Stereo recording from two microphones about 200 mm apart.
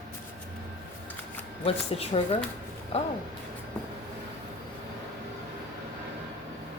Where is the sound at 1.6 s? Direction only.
30° left (ahead or behind).